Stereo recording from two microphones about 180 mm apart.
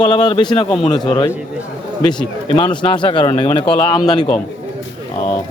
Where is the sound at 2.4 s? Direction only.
25° left (ahead or behind).